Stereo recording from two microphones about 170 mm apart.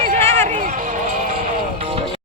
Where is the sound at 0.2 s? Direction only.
15° left (ahead or behind).